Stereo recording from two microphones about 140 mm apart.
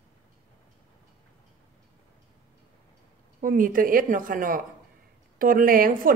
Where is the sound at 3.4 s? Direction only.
75° right (ahead or behind).